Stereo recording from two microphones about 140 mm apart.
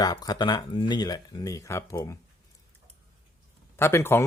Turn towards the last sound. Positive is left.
turn(degrees=15)  # may be behind; listen again after turning